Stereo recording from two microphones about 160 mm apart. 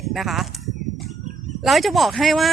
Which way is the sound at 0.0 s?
Centre (ahead or behind).